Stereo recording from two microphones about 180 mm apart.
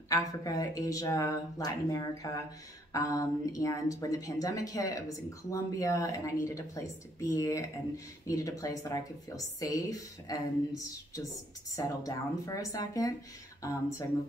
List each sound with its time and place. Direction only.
0.1 s a woman's voice: 20° left (ahead or behind)